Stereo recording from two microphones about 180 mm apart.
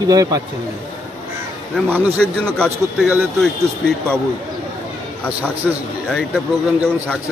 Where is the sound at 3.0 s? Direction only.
5° right (ahead or behind).